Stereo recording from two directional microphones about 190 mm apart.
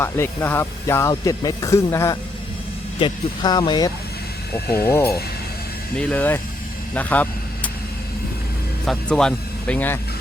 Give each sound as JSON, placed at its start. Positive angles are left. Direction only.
{"t": 0.0, "sound": "speech", "side_deg": 10}
{"t": 6.9, "sound": "vehicle", "side_deg": 10}
{"t": 8.9, "sound": "speech", "side_deg": 5}